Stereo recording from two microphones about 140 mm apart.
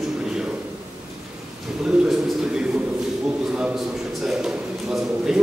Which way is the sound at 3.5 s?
5° right (ahead or behind).